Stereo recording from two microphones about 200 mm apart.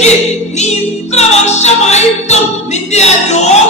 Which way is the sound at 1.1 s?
35° left (ahead or behind).